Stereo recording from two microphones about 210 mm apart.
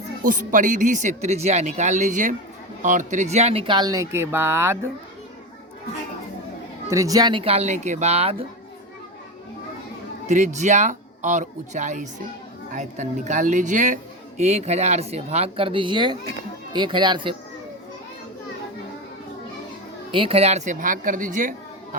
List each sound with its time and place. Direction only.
0.2 s speech: 40° right (ahead or behind); by 4.9 s 10° right (ahead or behind)
6.8 s speech: 15° right (ahead or behind)
10.2 s speech: 35° right (ahead or behind)
20.1 s speech: 25° right (ahead or behind)